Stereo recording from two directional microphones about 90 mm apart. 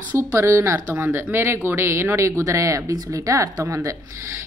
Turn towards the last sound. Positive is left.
turn(degrees=-30)  # may be behind; listen again after turning